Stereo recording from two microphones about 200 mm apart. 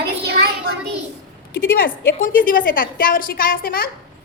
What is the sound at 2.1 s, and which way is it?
A woman's voice, 45° left (ahead or behind).